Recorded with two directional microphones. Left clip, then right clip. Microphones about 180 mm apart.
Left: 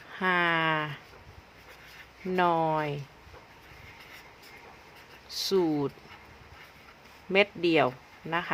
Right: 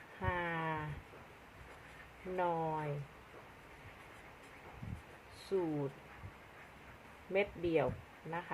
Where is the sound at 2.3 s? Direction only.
55° left (ahead or behind).